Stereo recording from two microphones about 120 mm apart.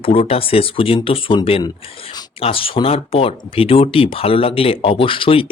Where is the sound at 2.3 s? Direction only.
50° left (ahead or behind).